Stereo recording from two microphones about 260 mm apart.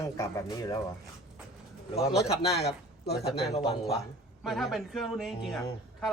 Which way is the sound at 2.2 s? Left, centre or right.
Left.